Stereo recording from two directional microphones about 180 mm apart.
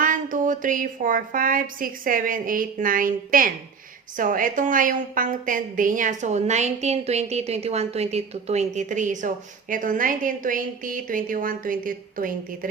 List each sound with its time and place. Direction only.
0.0 s a woman's voice: 45° right (ahead or behind)